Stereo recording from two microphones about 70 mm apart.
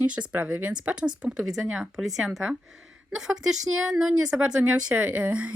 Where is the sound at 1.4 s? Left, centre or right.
Centre.